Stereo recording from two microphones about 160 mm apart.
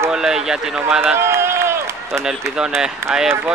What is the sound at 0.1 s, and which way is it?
Speech, 5° right (ahead or behind).